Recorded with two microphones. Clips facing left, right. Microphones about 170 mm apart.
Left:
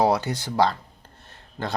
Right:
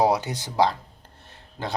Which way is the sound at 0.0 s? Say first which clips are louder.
Even; 15° right (ahead or behind).